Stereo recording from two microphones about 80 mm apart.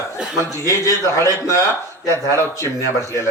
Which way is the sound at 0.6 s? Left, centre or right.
Left.